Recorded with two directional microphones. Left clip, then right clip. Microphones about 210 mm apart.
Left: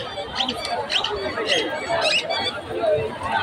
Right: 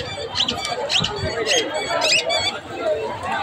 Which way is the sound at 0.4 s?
55° right (ahead or behind).